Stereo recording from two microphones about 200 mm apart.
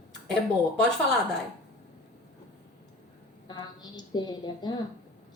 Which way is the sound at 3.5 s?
20° left (ahead or behind).